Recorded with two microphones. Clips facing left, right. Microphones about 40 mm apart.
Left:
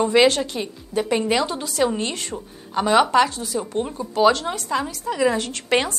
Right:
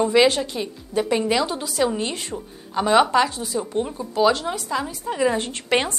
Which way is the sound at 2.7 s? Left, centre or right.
Left.